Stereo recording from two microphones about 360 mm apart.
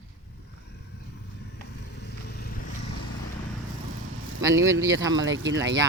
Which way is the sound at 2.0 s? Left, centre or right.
Left.